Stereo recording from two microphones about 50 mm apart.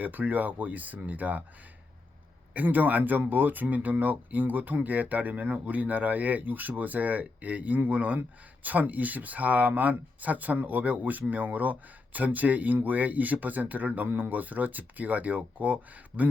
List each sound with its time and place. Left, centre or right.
0.0 s speech: right
2.5 s speech: right